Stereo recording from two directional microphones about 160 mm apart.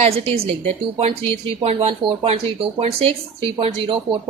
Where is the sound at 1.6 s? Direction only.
40° right (ahead or behind).